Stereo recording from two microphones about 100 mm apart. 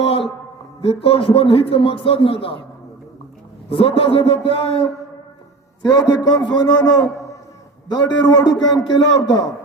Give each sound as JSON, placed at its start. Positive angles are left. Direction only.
{"t": 0.0, "sound": "a sound", "side_deg": 75}
{"t": 0.8, "sound": "a man's voice", "side_deg": 75}
{"t": 3.7, "sound": "a man's voice", "side_deg": 75}
{"t": 5.9, "sound": "a man's voice", "side_deg": 40}